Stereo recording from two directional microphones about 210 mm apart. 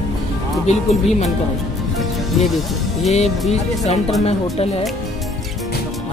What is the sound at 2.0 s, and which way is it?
Music, centre (ahead or behind).